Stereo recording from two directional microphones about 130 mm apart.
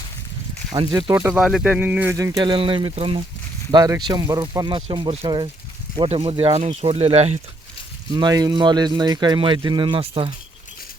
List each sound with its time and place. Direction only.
0.7 s speech: 30° right (ahead or behind)
1.1 s speech: 15° right (ahead or behind)
1.4 s speech: 5° right (ahead or behind)
2.1 s speech: 25° right (ahead or behind)
2.5 s speech: 40° right (ahead or behind)
3.7 s speech: 30° right (ahead or behind); by 7.3 s 55° right (ahead or behind)
8.1 s speech: 30° right (ahead or behind)